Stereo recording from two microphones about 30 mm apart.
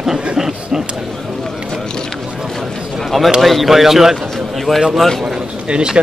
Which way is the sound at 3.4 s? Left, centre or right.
Centre.